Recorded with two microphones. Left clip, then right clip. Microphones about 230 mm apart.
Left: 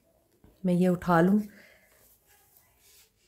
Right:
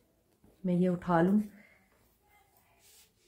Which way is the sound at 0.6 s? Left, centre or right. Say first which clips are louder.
Left 5 dB; left.